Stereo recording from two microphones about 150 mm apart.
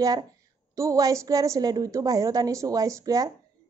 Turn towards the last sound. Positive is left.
turn(degrees=-25)  # may be behind; listen again after turning